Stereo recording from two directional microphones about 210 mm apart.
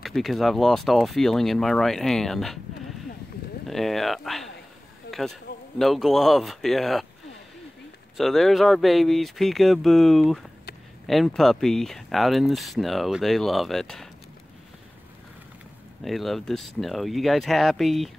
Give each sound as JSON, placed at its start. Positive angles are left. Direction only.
{"t": 0.0, "sound": "speech", "side_deg": 0}
{"t": 3.6, "sound": "speech", "side_deg": 0}
{"t": 5.1, "sound": "a sound", "side_deg": 50}
{"t": 5.8, "sound": "speech", "side_deg": 0}
{"t": 8.2, "sound": "speech", "side_deg": 0}
{"t": 16.0, "sound": "speech", "side_deg": 0}